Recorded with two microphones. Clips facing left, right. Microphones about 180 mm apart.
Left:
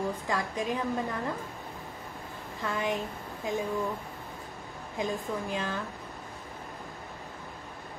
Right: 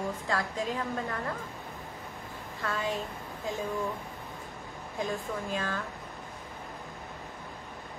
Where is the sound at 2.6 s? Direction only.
15° left (ahead or behind).